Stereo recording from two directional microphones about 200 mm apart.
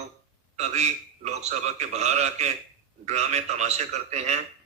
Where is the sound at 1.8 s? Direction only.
35° right (ahead or behind).